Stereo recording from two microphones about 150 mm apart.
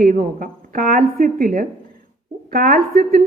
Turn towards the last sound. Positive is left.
turn(degrees=-70)  # may be behind; listen again after turning